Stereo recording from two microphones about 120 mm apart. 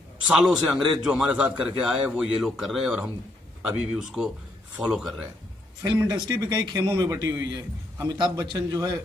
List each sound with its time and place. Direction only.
0.3 s a man's voice: 5° right (ahead or behind)
5.8 s a man's voice: 25° right (ahead or behind)